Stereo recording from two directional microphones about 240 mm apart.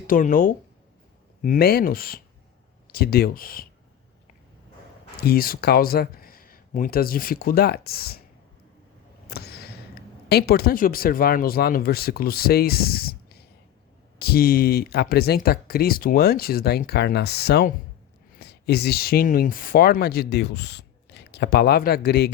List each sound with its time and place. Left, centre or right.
0.1 s speech: left
5.2 s speech: left
9.3 s speech: left